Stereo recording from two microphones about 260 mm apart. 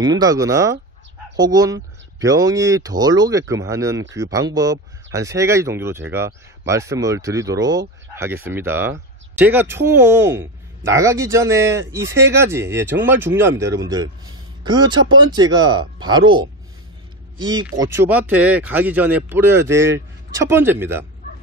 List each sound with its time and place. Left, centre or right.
0.0 s speech: centre